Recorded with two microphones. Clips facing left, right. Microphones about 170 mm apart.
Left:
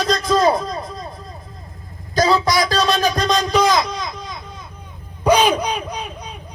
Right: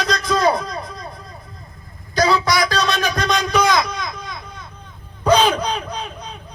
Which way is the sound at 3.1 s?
20° left (ahead or behind).